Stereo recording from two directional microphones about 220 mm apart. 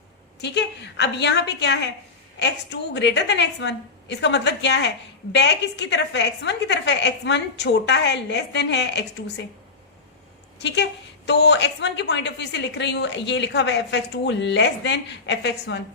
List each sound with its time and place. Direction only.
0.4 s a woman's voice: 50° left (ahead or behind)
10.6 s a woman's voice: 50° left (ahead or behind)